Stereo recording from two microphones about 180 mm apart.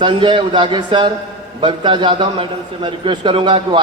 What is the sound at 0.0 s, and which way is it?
A man's voice, 25° right (ahead or behind).